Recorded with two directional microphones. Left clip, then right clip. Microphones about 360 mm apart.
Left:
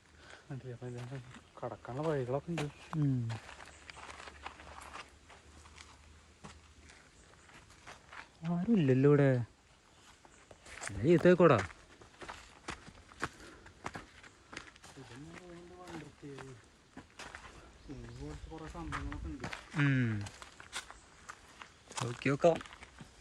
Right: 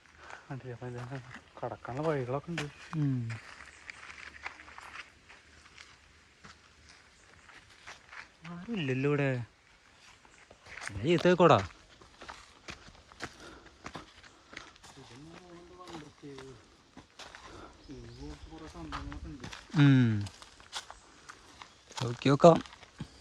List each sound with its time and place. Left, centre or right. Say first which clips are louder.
0.5 s speech: right 3 dB; centre
2.6 s speech: right 2 dB; centre
3.8 s walk: right 3 dB; centre
8.1 s wild animals: left 6 dB; centre
8.5 s speech: left 4 dB; centre
10.8 s speech: even; centre
12.2 s a sound: left 1 dB; centre
18.9 s a sound: right 1 dB; centre
19.8 s walk: right 7 dB; centre